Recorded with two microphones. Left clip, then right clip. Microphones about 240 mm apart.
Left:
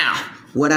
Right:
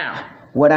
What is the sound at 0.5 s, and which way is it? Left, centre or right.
Speech, centre.